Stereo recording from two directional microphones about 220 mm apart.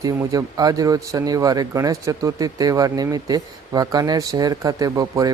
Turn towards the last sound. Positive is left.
turn(degrees=-15)  # may be behind; listen again after turning